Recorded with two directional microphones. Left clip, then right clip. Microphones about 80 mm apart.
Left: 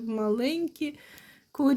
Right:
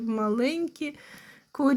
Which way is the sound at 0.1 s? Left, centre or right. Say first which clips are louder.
Right 1 dB; centre.